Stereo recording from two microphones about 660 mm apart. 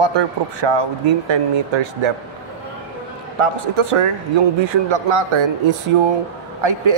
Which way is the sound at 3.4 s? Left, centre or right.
Right.